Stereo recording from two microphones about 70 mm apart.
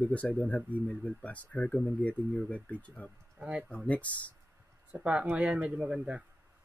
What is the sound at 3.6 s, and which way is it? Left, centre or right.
Speech, centre.